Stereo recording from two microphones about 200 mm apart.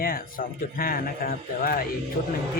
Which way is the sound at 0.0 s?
45° left (ahead or behind).